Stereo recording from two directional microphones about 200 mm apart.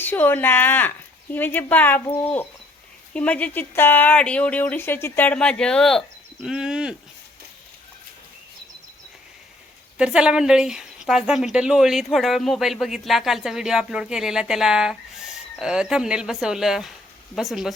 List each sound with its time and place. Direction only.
0.0 s speech: 10° left (ahead or behind)
10.0 s speech: 5° right (ahead or behind)